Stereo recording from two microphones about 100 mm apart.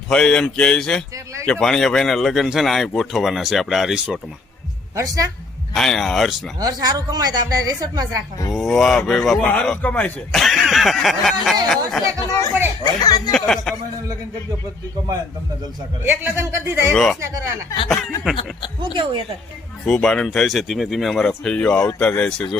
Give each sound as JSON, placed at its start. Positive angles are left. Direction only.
{"t": 0.1, "sound": "a man's voice", "side_deg": 10}
{"t": 1.1, "sound": "speech", "side_deg": -30}
{"t": 1.5, "sound": "speech", "side_deg": 5}
{"t": 4.9, "sound": "speech", "side_deg": -35}
{"t": 5.7, "sound": "speech", "side_deg": 5}
{"t": 6.6, "sound": "speech", "side_deg": -40}
{"t": 8.5, "sound": "a man's voice", "side_deg": 5}
{"t": 10.3, "sound": "snicker", "side_deg": 0}
{"t": 11.7, "sound": "speech", "side_deg": 0}
{"t": 12.8, "sound": "speech", "side_deg": 40}
{"t": 13.3, "sound": "a sound", "side_deg": 5}
{"t": 16.0, "sound": "a man's voice", "side_deg": -20}
{"t": 16.9, "sound": "a man's voice", "side_deg": 5}
{"t": 19.8, "sound": "a man's voice", "side_deg": 5}